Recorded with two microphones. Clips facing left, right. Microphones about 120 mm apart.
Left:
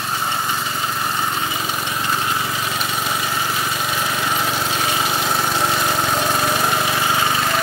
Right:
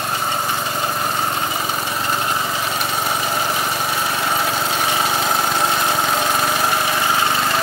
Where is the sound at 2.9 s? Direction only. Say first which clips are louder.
Right 2 dB; 30° right (ahead or behind).